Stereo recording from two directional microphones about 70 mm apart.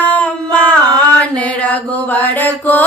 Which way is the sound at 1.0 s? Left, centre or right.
Left.